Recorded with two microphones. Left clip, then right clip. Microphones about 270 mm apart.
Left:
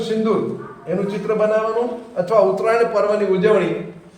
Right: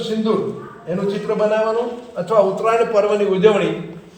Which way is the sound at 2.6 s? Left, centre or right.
Centre.